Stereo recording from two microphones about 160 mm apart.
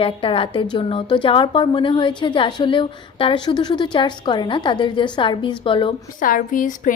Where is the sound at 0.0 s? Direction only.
35° left (ahead or behind).